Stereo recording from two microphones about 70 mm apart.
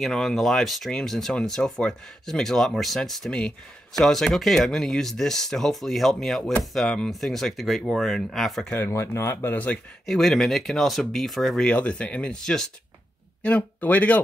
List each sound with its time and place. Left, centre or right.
0.0 s speech: centre
3.3 s speech: centre
8.7 s speech: left
10.0 s speech: centre
11.6 s speech: centre